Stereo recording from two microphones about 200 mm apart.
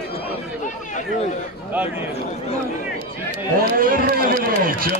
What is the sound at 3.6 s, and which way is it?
Speech, 45° right (ahead or behind).